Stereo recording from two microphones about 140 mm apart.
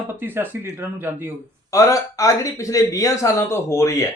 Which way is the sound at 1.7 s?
20° left (ahead or behind).